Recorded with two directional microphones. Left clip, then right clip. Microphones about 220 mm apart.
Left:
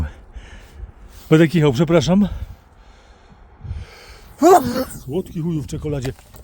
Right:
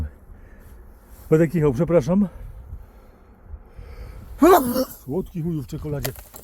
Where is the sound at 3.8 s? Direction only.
60° left (ahead or behind).